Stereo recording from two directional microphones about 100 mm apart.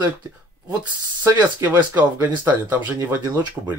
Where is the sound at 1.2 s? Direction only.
20° right (ahead or behind).